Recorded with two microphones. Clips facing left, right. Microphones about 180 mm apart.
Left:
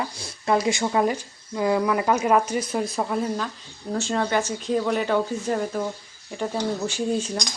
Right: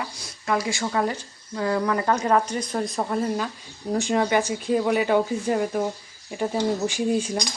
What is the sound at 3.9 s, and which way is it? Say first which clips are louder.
Speech: right 2 dB; 15° right (ahead or behind).